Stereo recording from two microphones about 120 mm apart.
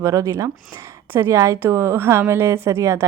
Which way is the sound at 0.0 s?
25° right (ahead or behind).